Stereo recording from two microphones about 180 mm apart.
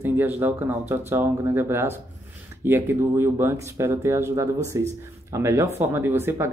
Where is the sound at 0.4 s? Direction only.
10° right (ahead or behind).